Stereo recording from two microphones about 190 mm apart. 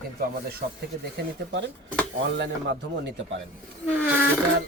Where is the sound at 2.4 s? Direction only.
70° right (ahead or behind).